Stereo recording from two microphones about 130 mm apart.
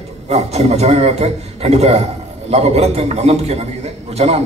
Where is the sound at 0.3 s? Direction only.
55° right (ahead or behind).